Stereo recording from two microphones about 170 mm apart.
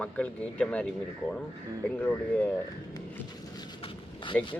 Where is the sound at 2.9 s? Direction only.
20° left (ahead or behind).